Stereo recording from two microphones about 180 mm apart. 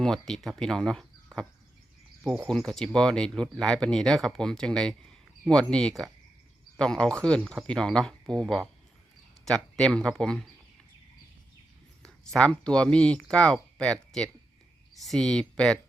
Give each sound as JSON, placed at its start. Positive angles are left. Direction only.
{"t": 0.0, "sound": "speech", "side_deg": 5}
{"t": 2.2, "sound": "speech", "side_deg": -5}
{"t": 12.0, "sound": "speech", "side_deg": 5}